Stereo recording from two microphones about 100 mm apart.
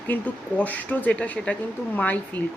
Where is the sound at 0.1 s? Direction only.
15° left (ahead or behind).